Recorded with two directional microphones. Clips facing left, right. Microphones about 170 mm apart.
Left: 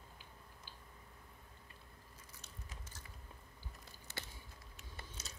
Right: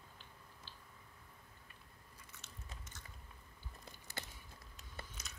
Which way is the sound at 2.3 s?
35° left (ahead or behind).